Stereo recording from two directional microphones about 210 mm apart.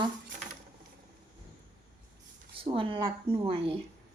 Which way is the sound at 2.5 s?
25° right (ahead or behind).